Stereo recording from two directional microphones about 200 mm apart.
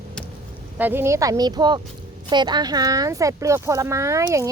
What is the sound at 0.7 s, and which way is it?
Speech, 10° right (ahead or behind).